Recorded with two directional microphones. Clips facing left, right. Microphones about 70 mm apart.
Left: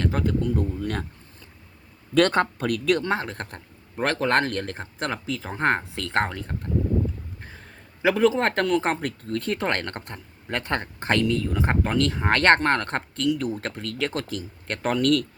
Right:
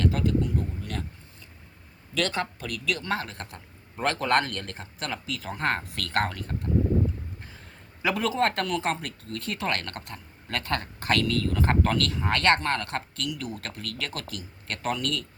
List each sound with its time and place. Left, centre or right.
0.0 s a sound: left
2.1 s speech: left
3.1 s speech: left
3.3 s speech: left
8.0 s speech: left
12.1 s speech: left